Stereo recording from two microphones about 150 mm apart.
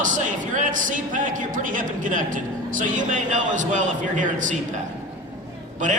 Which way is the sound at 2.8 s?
55° right (ahead or behind).